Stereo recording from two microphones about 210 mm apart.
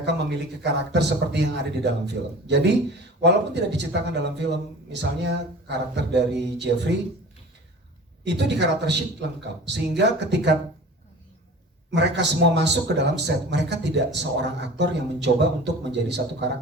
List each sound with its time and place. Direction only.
0.6 s a man's voice: 55° right (ahead or behind)
8.2 s a man's voice: 55° right (ahead or behind)
11.9 s a man's voice: 55° right (ahead or behind)